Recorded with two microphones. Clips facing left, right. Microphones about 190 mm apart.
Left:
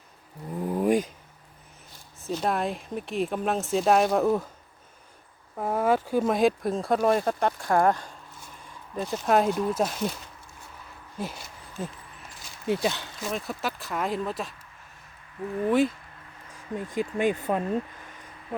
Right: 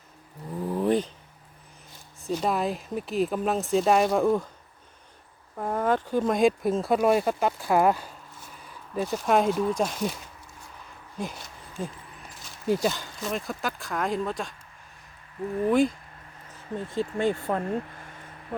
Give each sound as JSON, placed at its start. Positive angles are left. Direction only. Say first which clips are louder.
{"t": 0.7, "sound": "a sound", "louder": "left 1 dB", "side_deg": 10}
{"t": 2.2, "sound": "speech", "louder": "right 1 dB", "side_deg": 0}
{"t": 5.5, "sound": "speech", "louder": "left 1 dB", "side_deg": 5}
{"t": 11.2, "sound": "speech", "louder": "even", "side_deg": 5}
{"t": 15.6, "sound": "speech", "louder": "right 1 dB", "side_deg": 5}
{"t": 16.5, "sound": "speech", "louder": "even", "side_deg": 15}